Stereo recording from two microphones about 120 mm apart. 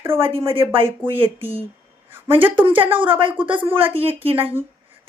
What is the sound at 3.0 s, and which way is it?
Speech, 15° right (ahead or behind).